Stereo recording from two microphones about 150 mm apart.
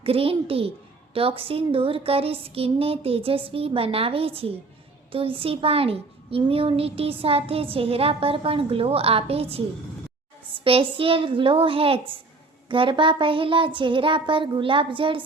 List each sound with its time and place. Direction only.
0.0 s a child's voice: 40° right (ahead or behind)